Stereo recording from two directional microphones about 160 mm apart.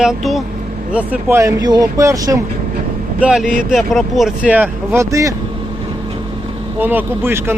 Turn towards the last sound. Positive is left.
turn(degrees=-15)  # may be behind; listen again after turning